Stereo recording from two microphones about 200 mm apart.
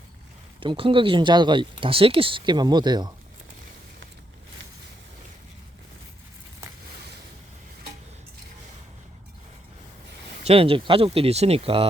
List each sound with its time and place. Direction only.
0.6 s speech: 25° right (ahead or behind)
10.4 s speech: 30° right (ahead or behind)